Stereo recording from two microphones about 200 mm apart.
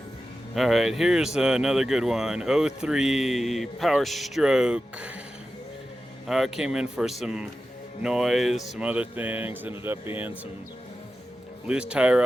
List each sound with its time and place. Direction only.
0.5 s speech: centre (ahead or behind)
6.2 s speech: centre (ahead or behind)
11.7 s speech: 5° right (ahead or behind)